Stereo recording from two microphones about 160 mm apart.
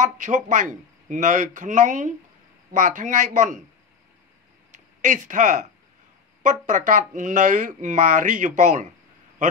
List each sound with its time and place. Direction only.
0.0 s speech: 50° right (ahead or behind)
4.7 s speech: 55° right (ahead or behind)